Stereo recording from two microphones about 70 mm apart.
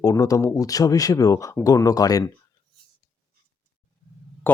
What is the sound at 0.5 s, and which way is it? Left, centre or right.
Speech, left.